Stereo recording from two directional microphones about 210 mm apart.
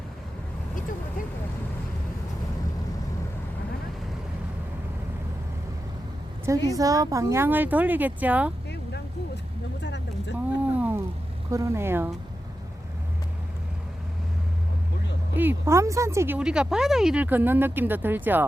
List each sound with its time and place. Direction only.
6.4 s speech: 15° right (ahead or behind)
9.8 s vehicle: 55° left (ahead or behind)
10.8 s a sound: 10° right (ahead or behind)
11.5 s speech: 15° right (ahead or behind)
15.4 s speech: 10° right (ahead or behind)